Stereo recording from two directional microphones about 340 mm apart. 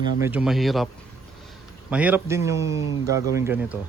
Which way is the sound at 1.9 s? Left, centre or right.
Centre.